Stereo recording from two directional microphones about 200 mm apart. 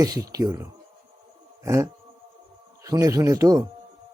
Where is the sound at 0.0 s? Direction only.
15° right (ahead or behind).